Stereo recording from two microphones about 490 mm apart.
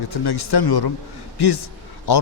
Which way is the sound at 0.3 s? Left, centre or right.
Left.